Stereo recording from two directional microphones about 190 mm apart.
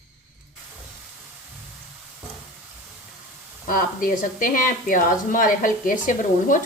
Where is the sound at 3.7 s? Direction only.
45° left (ahead or behind).